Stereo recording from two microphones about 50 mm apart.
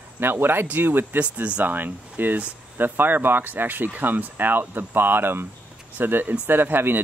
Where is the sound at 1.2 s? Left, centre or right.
Right.